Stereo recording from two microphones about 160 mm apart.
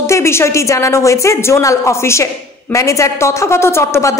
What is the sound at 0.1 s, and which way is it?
A woman's voice, 15° left (ahead or behind).